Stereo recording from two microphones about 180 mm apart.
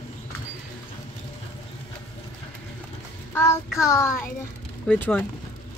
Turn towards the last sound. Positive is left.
turn(degrees=10)  # may be behind; listen again after turning